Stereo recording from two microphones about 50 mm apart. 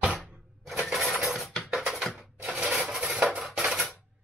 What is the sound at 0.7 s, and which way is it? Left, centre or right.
Shatter, centre.